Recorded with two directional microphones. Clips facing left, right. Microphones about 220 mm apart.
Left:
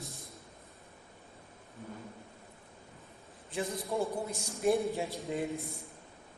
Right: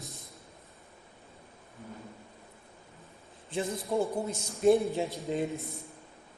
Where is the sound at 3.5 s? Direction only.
25° right (ahead or behind).